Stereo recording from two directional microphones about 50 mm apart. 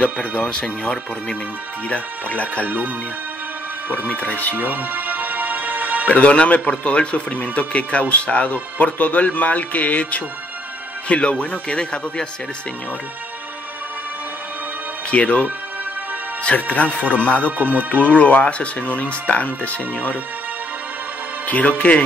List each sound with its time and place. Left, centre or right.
0.5 s speech: centre
4.1 s speech: left
4.6 s music: right
6.0 s a man's voice: left
15.0 s a man's voice: left
16.4 s a man's voice: left
17.5 s music: right
18.1 s a man's voice: left
21.5 s a man's voice: left